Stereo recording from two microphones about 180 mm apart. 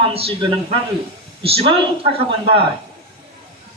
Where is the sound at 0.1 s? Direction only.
30° right (ahead or behind).